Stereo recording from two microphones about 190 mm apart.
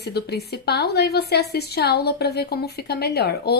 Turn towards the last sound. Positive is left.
turn(degrees=60)  # may be behind; listen again after turning